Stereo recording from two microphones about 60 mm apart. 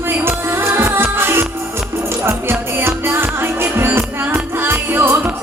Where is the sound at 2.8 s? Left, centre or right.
Right.